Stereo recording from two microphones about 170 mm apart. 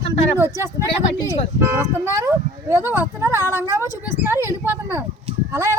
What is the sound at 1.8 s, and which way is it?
A woman's voice, 15° right (ahead or behind).